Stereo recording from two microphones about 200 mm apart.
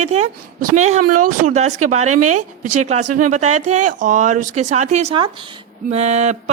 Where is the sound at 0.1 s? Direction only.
35° right (ahead or behind).